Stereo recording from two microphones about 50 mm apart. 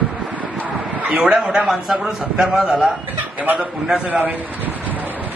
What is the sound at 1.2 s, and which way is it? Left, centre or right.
A man's voice, centre.